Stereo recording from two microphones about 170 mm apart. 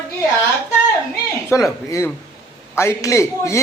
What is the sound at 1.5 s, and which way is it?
A man's voice, 15° left (ahead or behind).